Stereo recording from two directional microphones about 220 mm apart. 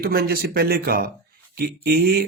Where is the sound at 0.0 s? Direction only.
45° right (ahead or behind).